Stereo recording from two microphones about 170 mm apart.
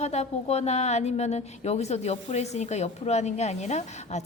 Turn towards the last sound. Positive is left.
turn(degrees=40)  # may be behind; listen again after turning